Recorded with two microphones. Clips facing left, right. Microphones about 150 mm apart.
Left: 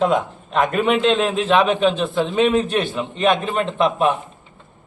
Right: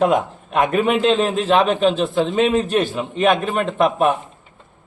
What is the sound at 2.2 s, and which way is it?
Speech, 40° right (ahead or behind).